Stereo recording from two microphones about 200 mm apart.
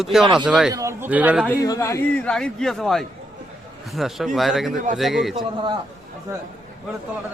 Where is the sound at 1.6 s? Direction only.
15° left (ahead or behind).